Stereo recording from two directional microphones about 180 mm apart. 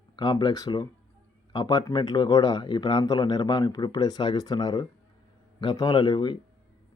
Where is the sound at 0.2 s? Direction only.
25° left (ahead or behind).